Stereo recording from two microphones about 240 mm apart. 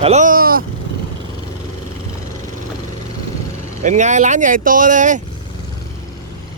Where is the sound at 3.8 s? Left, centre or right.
Right.